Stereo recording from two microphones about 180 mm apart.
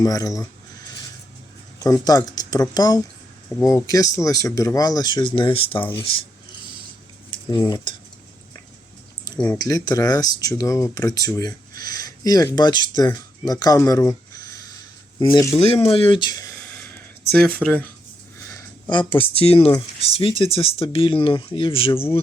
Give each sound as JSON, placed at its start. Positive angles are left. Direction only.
{"t": 0.0, "sound": "speech", "side_deg": 20}
{"t": 1.8, "sound": "speech", "side_deg": 20}
{"t": 7.3, "sound": "cutlery", "side_deg": 25}
{"t": 9.4, "sound": "speech", "side_deg": 15}
{"t": 14.3, "sound": "a sound", "side_deg": 20}
{"t": 15.2, "sound": "speech", "side_deg": 15}
{"t": 15.5, "sound": "speech", "side_deg": 35}
{"t": 17.5, "sound": "speech", "side_deg": 5}